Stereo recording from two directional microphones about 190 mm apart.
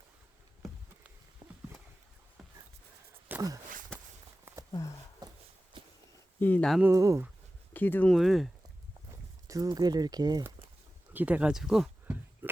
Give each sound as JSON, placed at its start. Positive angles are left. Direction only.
{"t": 1.4, "sound": "horse", "side_deg": -25}
{"t": 3.2, "sound": "walk", "side_deg": -15}
{"t": 3.9, "sound": "walk", "side_deg": 5}
{"t": 4.5, "sound": "a sound", "side_deg": -10}
{"t": 6.4, "sound": "speech", "side_deg": 10}
{"t": 6.8, "sound": "speech", "side_deg": -15}
{"t": 7.7, "sound": "speech", "side_deg": 10}
{"t": 9.5, "sound": "speech", "side_deg": -20}
{"t": 11.1, "sound": "a sound", "side_deg": -10}